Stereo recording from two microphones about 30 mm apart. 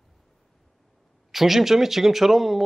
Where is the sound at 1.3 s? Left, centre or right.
Centre.